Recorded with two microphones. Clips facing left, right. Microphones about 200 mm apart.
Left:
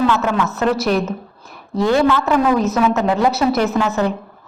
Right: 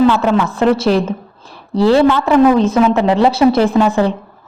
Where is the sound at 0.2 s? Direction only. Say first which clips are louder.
Right 5 dB; 30° right (ahead or behind).